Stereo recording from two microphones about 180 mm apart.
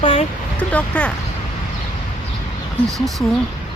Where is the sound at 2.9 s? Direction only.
Centre (ahead or behind).